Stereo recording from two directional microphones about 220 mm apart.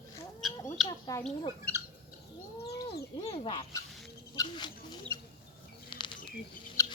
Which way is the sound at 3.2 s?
25° left (ahead or behind).